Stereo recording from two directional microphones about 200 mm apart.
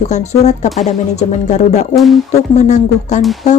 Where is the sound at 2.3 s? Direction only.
35° left (ahead or behind).